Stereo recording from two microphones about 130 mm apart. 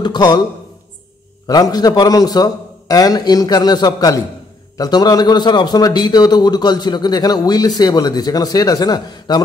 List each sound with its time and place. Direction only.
0.0 s speech: 35° left (ahead or behind)
1.5 s a man's voice: 30° left (ahead or behind)